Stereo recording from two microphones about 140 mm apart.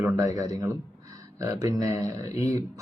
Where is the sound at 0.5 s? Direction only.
25° right (ahead or behind).